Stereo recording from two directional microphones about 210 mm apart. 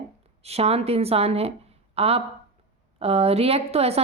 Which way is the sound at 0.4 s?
30° right (ahead or behind).